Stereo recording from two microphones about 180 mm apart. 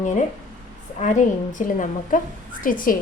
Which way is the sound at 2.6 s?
50° left (ahead or behind).